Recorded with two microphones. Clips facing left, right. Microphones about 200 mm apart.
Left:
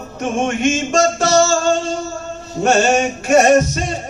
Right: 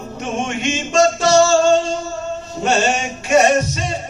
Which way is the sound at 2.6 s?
45° left (ahead or behind).